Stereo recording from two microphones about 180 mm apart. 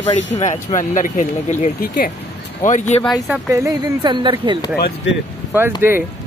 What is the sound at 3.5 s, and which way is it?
Speech, 20° right (ahead or behind).